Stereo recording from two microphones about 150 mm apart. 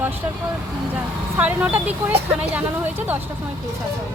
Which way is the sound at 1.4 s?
10° right (ahead or behind).